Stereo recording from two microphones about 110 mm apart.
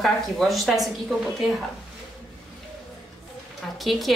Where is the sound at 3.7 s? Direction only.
Centre (ahead or behind).